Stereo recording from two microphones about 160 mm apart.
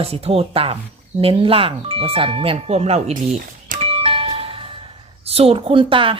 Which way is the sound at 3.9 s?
35° right (ahead or behind).